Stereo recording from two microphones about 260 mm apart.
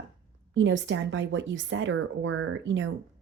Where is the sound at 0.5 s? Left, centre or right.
Right.